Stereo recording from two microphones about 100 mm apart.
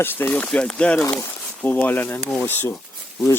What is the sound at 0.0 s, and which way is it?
Speech, 20° left (ahead or behind).